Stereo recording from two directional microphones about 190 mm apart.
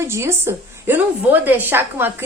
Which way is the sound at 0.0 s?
15° right (ahead or behind).